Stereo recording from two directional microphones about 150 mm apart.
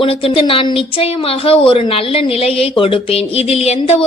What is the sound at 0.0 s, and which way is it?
A woman's voice, 40° left (ahead or behind).